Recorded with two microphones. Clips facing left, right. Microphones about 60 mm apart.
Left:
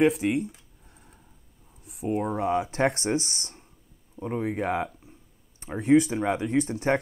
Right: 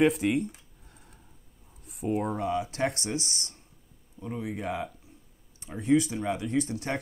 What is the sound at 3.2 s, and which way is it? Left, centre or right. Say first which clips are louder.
Speech: left 4 dB; left.